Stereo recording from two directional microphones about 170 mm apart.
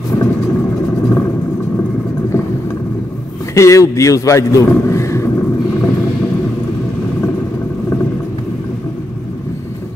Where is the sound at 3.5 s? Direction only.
15° left (ahead or behind).